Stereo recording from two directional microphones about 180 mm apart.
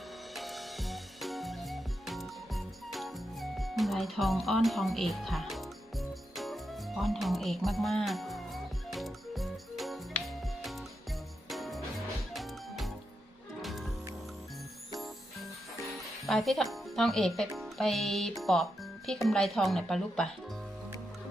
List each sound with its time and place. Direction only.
0.3 s music: centre (ahead or behind)
16.2 s speech: centre (ahead or behind)